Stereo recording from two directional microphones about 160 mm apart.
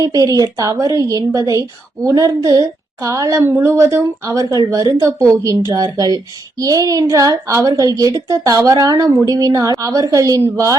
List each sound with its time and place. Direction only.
0.0 s a woman's voice: 20° right (ahead or behind)